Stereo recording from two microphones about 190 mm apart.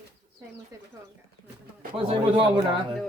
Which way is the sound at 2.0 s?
30° right (ahead or behind).